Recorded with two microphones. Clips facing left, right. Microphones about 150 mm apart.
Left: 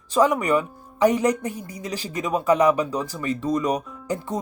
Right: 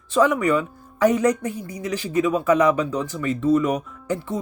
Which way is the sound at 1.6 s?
10° right (ahead or behind).